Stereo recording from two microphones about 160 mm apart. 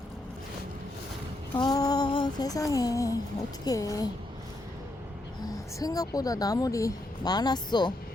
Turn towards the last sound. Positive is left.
turn(degrees=25)  # may be behind; listen again after turning